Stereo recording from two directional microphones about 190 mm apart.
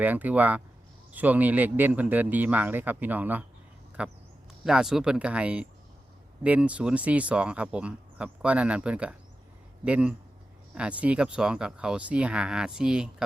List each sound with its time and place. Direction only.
0.0 s speech: 10° right (ahead or behind)